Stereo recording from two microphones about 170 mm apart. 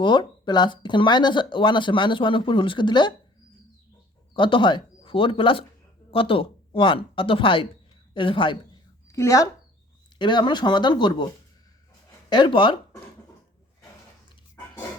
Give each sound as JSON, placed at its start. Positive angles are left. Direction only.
{"t": 0.0, "sound": "speech", "side_deg": 25}
{"t": 4.4, "sound": "speech", "side_deg": 30}
{"t": 9.0, "sound": "speech", "side_deg": 15}
{"t": 12.3, "sound": "speech", "side_deg": 25}